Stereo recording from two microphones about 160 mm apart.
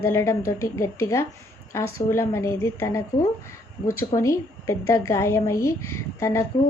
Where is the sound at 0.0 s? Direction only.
15° left (ahead or behind).